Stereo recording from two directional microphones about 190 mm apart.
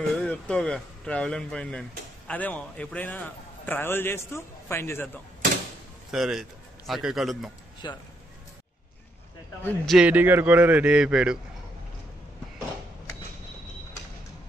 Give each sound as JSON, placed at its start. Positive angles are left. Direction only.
{"t": 0.1, "sound": "a man's voice", "side_deg": 5}
{"t": 6.1, "sound": "a man's voice", "side_deg": 0}
{"t": 7.8, "sound": "speech", "side_deg": 25}
{"t": 9.6, "sound": "a man's voice", "side_deg": 10}
{"t": 9.9, "sound": "a man's voice", "side_deg": -5}